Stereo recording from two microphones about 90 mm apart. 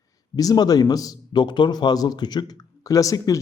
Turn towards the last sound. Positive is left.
turn(degrees=40)  # may be behind; listen again after turning